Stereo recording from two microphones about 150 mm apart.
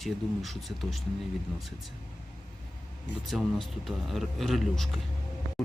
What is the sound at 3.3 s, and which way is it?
Speech, centre (ahead or behind).